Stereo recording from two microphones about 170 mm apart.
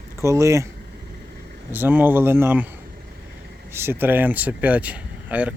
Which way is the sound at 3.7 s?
15° right (ahead or behind).